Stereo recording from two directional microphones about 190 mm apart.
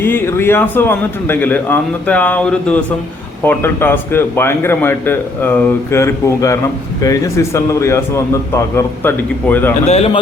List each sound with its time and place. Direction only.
0.0 s a man's voice: 10° left (ahead or behind)
9.8 s speech: 35° left (ahead or behind)